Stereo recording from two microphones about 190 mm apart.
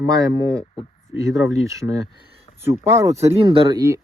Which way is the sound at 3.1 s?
35° right (ahead or behind).